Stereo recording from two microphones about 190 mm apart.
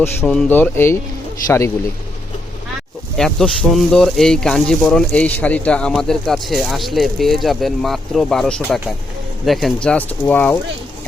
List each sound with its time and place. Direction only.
0.0 s speech: 10° left (ahead or behind)
3.2 s speech: 5° left (ahead or behind)